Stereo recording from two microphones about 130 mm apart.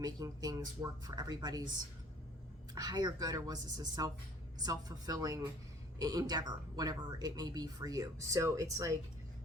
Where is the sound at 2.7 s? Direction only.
30° right (ahead or behind).